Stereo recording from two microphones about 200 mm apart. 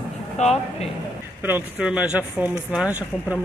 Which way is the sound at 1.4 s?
5° right (ahead or behind).